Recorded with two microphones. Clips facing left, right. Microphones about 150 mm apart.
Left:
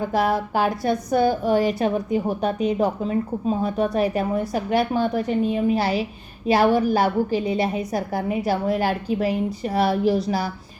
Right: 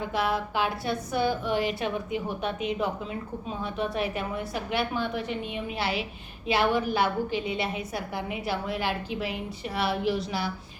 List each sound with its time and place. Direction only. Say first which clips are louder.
0.1 s a woman's voice: left 5 dB; 40° left (ahead or behind)